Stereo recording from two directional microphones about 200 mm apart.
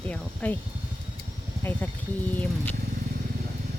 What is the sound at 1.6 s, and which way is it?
Music, 10° left (ahead or behind).